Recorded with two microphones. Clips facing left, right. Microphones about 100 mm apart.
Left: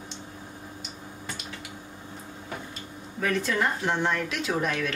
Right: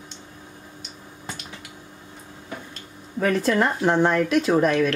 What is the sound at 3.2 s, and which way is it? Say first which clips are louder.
Speech: right 6 dB; 40° right (ahead or behind).